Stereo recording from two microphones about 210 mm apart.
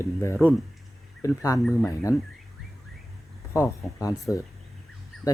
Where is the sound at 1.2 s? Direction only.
15° left (ahead or behind).